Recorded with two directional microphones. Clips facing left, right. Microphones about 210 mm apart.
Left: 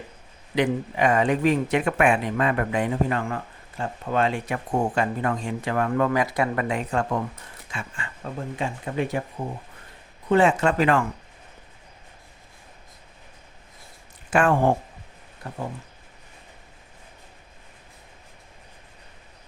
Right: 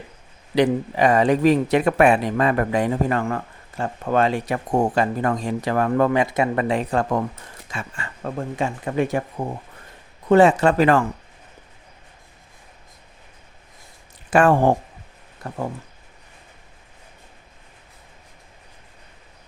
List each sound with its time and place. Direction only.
0.5 s speech: 35° right (ahead or behind)
6.1 s speech: 25° right (ahead or behind); by 9.2 s 45° right (ahead or behind)
10.2 s speech: 40° right (ahead or behind)
14.3 s speech: 40° right (ahead or behind)